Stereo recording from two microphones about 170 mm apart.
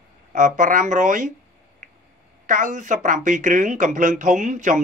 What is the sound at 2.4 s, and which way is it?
Speech, 50° right (ahead or behind).